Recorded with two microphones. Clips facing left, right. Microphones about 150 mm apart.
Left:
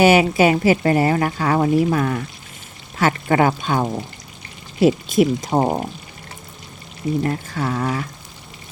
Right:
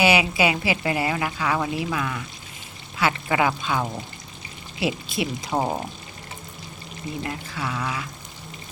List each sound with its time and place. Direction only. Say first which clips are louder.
0.0 s speech: left 7 dB; 45° left (ahead or behind)
7.2 s speech: left 6 dB; 45° left (ahead or behind)